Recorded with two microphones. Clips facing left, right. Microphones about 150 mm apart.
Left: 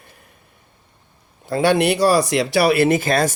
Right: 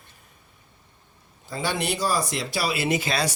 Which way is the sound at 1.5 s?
65° left (ahead or behind).